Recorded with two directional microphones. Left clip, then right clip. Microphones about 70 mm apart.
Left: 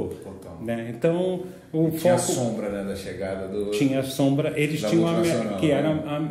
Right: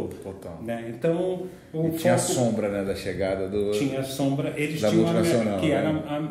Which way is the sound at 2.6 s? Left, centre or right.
Right.